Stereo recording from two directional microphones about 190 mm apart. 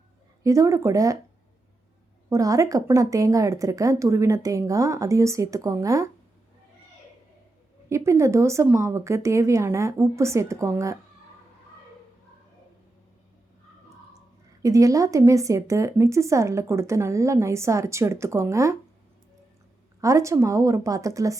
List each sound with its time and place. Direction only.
0.4 s a woman's voice: 15° right (ahead or behind)
2.3 s a woman's voice: 15° right (ahead or behind)
7.9 s a woman's voice: 15° right (ahead or behind)
14.6 s a woman's voice: 15° right (ahead or behind)
20.0 s a woman's voice: 15° right (ahead or behind)